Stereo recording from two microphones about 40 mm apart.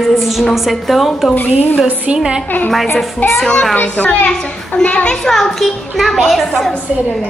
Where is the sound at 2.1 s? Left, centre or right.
Right.